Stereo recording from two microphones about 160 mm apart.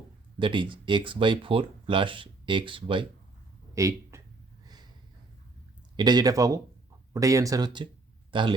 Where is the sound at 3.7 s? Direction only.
20° right (ahead or behind).